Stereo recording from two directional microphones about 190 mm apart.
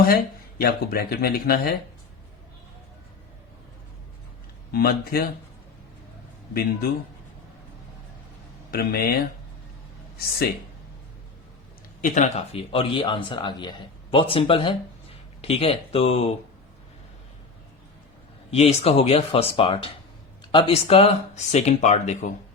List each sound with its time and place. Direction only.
0.6 s speech: 55° left (ahead or behind)
4.7 s speech: 55° left (ahead or behind)
6.5 s speech: 55° left (ahead or behind)
8.7 s speech: 55° left (ahead or behind)
12.0 s speech: 40° left (ahead or behind)
18.5 s speech: 35° left (ahead or behind)